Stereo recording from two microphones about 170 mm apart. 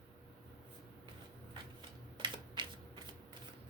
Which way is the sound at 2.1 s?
25° right (ahead or behind).